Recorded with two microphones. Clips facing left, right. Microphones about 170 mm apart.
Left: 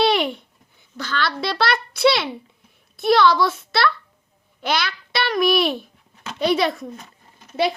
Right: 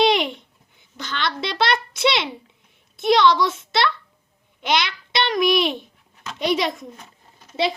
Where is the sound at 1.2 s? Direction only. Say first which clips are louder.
Even; 20° right (ahead or behind).